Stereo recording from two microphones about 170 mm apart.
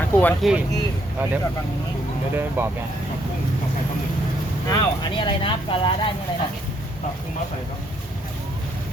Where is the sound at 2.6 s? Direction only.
10° right (ahead or behind).